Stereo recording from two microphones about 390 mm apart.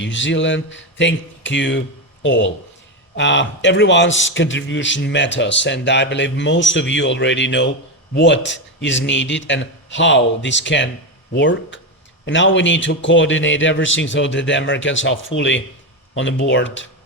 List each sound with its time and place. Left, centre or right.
0.0 s a man's voice: left